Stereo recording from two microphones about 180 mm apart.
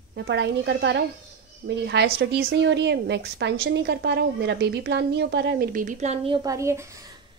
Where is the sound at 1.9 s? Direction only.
65° right (ahead or behind); by 7.0 s 15° right (ahead or behind).